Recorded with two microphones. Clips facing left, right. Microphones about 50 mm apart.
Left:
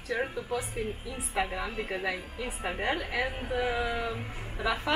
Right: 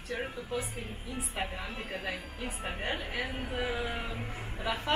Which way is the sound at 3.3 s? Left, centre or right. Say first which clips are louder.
Left 4 dB; centre.